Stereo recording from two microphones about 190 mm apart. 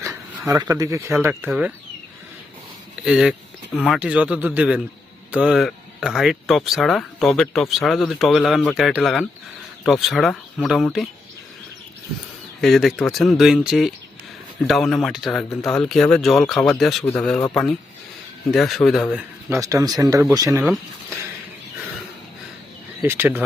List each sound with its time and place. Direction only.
0.0 s speech: 15° right (ahead or behind)
3.0 s speech: 5° right (ahead or behind)
12.6 s speech: centre (ahead or behind)
18.5 s speech: centre (ahead or behind)
19.1 s speech: 15° right (ahead or behind)
23.0 s speech: 10° right (ahead or behind)